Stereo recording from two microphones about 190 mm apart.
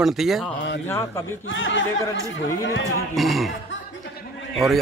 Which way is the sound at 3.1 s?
Centre (ahead or behind).